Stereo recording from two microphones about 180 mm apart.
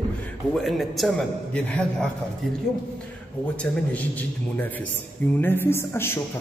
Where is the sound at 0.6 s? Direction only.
Centre (ahead or behind).